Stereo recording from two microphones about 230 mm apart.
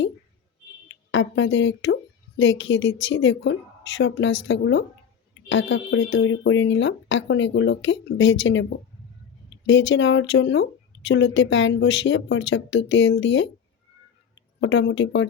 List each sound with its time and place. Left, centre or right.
0.9 s a woman's voice: left
14.6 s speech: left